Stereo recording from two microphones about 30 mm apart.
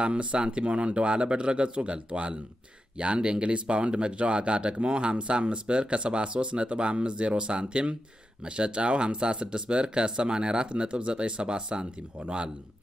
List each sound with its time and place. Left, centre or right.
0.0 s speech: right